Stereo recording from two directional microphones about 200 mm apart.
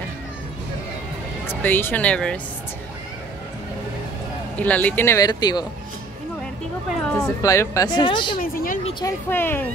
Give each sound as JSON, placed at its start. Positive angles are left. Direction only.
{"t": 1.5, "sound": "speech", "side_deg": 10}
{"t": 4.6, "sound": "speech", "side_deg": 5}
{"t": 7.1, "sound": "speech", "side_deg": 0}
{"t": 7.4, "sound": "speech", "side_deg": 15}
{"t": 8.4, "sound": "speech", "side_deg": 45}
{"t": 9.0, "sound": "speech", "side_deg": 10}